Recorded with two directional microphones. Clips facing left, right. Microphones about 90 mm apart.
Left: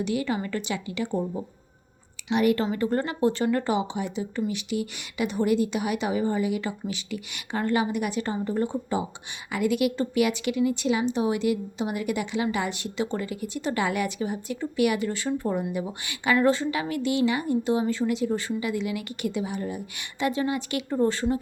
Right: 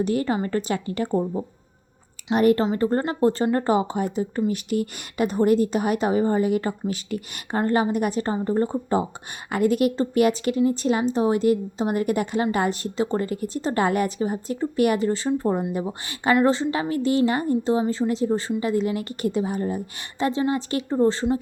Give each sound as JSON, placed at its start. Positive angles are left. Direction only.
{"t": 0.0, "sound": "a woman's voice", "side_deg": -40}
{"t": 2.3, "sound": "a woman's voice", "side_deg": -40}